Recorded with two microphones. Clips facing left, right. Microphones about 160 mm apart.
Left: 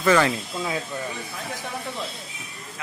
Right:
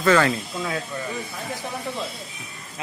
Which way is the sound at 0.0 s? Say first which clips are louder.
Right 1 dB; 10° left (ahead or behind).